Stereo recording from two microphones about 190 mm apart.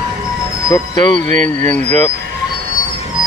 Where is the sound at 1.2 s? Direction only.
40° right (ahead or behind).